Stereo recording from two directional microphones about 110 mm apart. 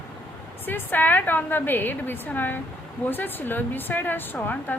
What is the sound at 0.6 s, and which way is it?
Speech, 15° left (ahead or behind).